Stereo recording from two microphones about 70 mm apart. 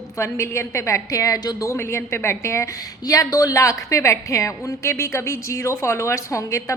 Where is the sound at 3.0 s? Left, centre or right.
Left.